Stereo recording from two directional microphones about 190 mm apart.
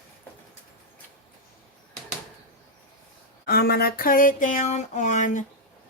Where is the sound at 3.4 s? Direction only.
55° left (ahead or behind).